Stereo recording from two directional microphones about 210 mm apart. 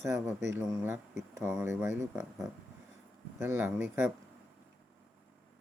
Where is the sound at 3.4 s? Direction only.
10° right (ahead or behind).